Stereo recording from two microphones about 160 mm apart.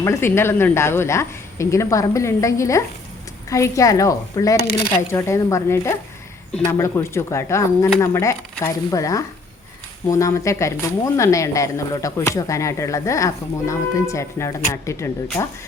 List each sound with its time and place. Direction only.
0.0 s a woman's voice: 15° left (ahead or behind)